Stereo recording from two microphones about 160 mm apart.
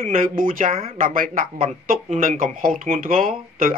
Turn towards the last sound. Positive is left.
turn(degrees=-60)  # may be behind; listen again after turning